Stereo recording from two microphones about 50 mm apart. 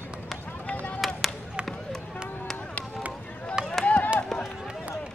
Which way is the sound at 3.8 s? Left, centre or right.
Left.